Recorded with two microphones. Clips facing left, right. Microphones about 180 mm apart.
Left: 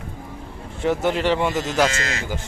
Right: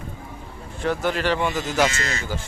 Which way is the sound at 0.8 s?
20° left (ahead or behind).